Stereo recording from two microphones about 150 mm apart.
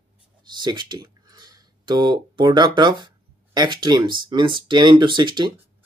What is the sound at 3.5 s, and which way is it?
Speech, 30° right (ahead or behind).